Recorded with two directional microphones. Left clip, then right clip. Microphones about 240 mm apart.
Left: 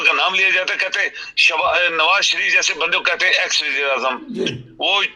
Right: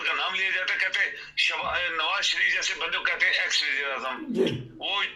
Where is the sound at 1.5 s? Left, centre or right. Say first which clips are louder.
Left 13 dB; left.